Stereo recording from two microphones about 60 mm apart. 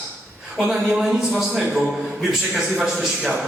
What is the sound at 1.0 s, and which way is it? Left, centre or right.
Speech, centre.